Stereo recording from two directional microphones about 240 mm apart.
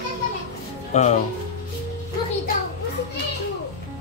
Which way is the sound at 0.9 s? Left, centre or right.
Left.